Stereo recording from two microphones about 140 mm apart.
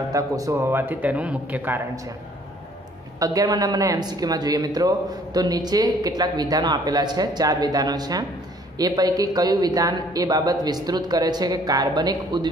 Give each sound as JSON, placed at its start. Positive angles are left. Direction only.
{"t": 0.1, "sound": "speech", "side_deg": -20}
{"t": 3.2, "sound": "a man's voice", "side_deg": -25}